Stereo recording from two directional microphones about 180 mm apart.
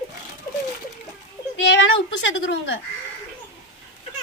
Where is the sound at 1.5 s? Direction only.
80° left.